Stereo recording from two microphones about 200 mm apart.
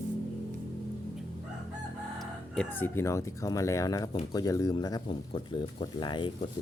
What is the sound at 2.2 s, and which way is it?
Speech, 5° left (ahead or behind).